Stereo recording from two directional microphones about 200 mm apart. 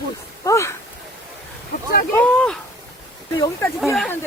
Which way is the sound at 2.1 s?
5° left (ahead or behind).